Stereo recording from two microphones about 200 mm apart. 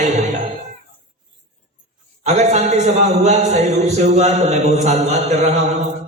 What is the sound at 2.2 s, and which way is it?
A man's voice, 35° right (ahead or behind).